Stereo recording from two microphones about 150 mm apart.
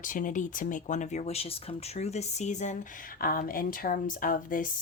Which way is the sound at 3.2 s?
75° left (ahead or behind).